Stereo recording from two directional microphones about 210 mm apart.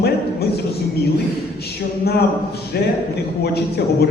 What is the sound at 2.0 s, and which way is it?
Speech, 50° left (ahead or behind).